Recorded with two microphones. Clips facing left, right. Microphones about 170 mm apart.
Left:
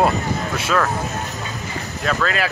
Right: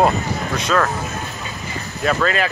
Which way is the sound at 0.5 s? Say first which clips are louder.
Right 2 dB; 5° left (ahead or behind).